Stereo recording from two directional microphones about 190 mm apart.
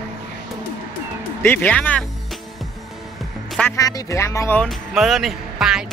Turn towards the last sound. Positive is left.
turn(degrees=-5)  # may be behind; listen again after turning